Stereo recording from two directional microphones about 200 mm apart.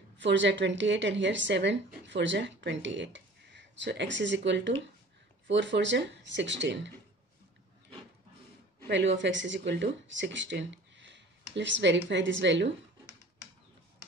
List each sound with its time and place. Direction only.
0.2 s a woman's voice: 65° right (ahead or behind)
8.8 s a woman's voice: 65° right (ahead or behind)